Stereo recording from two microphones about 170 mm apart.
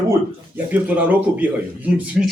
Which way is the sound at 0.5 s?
10° right (ahead or behind).